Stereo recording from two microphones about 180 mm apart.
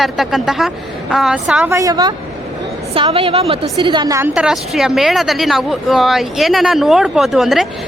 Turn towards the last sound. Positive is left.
turn(degrees=0)  # may be behind; listen again after turning